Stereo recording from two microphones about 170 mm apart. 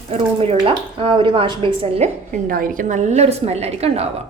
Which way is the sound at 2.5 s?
55° right (ahead or behind).